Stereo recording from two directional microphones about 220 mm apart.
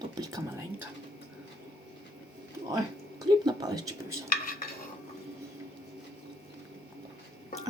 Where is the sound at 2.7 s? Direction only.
15° right (ahead or behind).